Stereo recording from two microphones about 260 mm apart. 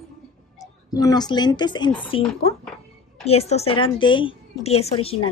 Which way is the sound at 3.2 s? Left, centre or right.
Left.